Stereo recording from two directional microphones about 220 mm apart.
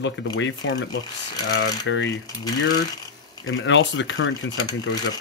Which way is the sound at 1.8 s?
55° left (ahead or behind).